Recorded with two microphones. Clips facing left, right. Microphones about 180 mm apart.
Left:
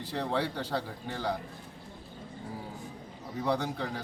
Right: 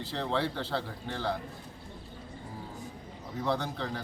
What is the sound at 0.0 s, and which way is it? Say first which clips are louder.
A man's voice: even; 15° left (ahead or behind).